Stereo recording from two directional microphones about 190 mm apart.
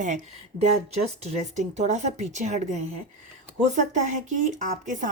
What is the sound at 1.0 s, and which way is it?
Speech, 35° right (ahead or behind).